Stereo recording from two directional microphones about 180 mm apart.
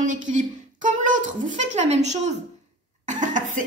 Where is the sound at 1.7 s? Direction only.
40° right (ahead or behind).